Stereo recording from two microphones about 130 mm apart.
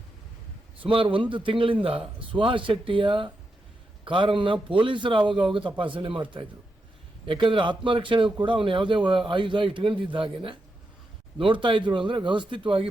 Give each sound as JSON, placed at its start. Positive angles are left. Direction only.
{"t": 0.8, "sound": "a man's voice", "side_deg": -40}